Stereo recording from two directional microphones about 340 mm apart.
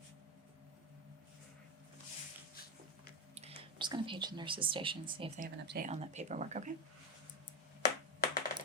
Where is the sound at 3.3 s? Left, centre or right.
Centre.